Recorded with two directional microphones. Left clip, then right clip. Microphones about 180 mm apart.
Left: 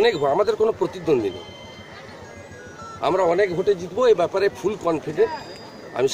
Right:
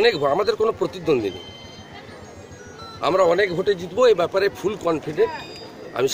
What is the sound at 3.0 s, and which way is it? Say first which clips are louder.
A man's voice: right 1 dB; centre (ahead or behind).